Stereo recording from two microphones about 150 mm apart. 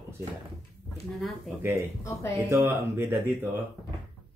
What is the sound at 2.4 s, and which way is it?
Speech, 15° right (ahead or behind).